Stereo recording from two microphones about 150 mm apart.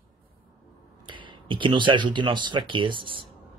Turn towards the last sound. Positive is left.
turn(degrees=-35)  # may be behind; listen again after turning